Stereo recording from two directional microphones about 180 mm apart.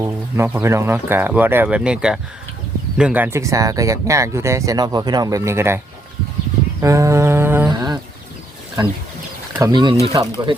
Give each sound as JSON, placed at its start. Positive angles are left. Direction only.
{"t": 0.0, "sound": "speech", "side_deg": -15}
{"t": 6.8, "sound": "speech", "side_deg": -15}
{"t": 7.7, "sound": "speech", "side_deg": -25}